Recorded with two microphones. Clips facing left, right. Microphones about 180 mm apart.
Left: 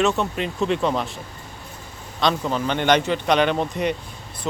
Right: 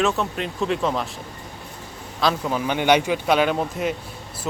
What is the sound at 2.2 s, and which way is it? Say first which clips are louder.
Speech: even; 5° right (ahead or behind).